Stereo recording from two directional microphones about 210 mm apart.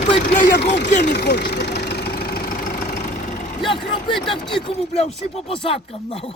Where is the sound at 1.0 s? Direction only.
50° left (ahead or behind).